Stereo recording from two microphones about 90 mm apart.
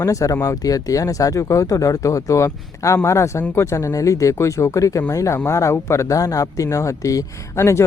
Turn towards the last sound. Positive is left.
turn(degrees=30)  # may be behind; listen again after turning